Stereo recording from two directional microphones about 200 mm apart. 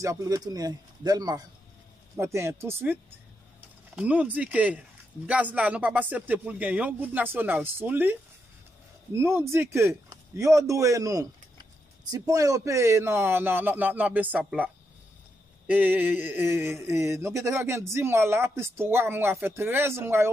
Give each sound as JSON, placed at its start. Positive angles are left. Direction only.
{"t": 0.0, "sound": "a man's voice", "side_deg": -15}